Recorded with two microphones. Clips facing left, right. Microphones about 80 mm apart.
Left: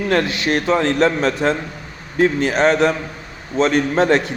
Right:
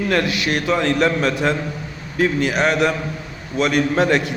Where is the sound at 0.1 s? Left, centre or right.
Left.